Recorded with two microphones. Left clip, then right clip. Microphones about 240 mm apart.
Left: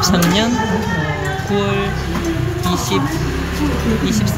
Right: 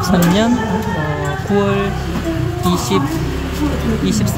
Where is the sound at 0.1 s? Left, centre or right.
Centre.